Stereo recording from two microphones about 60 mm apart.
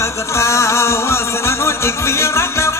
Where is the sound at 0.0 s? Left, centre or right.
Left.